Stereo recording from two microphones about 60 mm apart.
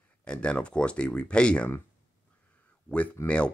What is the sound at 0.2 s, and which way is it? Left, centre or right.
Speech, centre.